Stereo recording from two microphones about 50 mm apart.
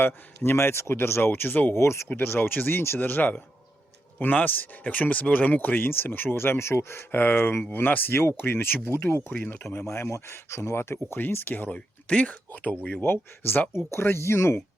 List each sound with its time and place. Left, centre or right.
0.5 s speech: left
1.7 s speech: left
2.1 s speech: left
9.8 s speech: left
11.2 s speech: left
12.0 s speech: left
12.9 s speech: left